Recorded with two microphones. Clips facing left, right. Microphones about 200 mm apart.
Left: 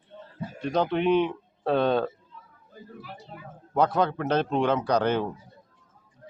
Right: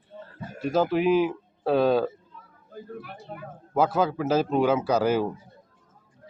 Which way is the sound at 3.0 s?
55° right (ahead or behind).